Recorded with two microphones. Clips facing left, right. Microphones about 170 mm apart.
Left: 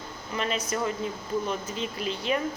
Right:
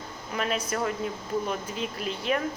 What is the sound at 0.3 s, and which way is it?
Speech, 5° right (ahead or behind).